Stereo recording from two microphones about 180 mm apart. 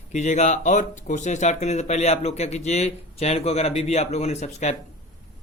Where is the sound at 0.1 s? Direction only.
40° left (ahead or behind).